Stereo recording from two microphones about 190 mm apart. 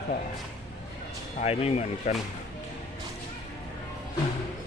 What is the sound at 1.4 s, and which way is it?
Speech, 35° left (ahead or behind).